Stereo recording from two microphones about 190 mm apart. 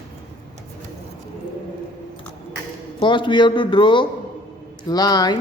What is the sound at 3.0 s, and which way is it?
A man's voice, 25° left (ahead or behind).